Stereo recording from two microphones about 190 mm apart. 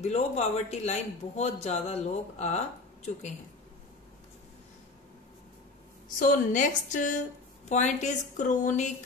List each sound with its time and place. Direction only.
0.0 s a man's voice: 35° left (ahead or behind)
6.1 s a man's voice: 45° left (ahead or behind)